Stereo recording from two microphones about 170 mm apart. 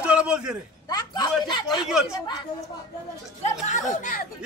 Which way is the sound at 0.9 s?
25° left (ahead or behind).